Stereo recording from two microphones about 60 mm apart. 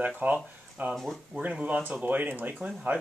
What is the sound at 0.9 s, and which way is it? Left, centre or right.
Speech, centre.